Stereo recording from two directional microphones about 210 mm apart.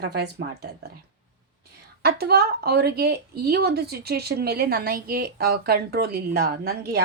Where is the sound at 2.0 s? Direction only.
50° right (ahead or behind).